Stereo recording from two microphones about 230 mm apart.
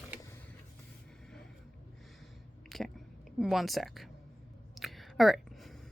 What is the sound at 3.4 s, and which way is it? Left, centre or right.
Speech, centre.